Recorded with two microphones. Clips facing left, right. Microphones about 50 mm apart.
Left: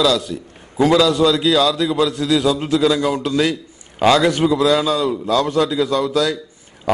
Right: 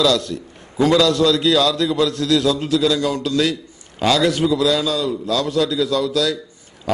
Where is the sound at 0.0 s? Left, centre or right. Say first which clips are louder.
Even; centre.